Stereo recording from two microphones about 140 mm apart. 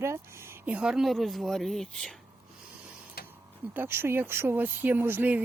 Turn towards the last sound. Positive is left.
turn(degrees=-10)  # may be behind; listen again after turning